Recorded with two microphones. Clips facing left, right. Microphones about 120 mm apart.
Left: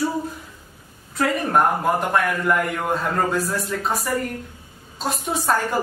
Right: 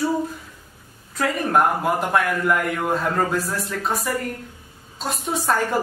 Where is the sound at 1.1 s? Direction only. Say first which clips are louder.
Even; centre (ahead or behind).